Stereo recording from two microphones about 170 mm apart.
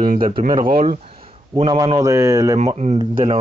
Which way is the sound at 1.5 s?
25° right (ahead or behind).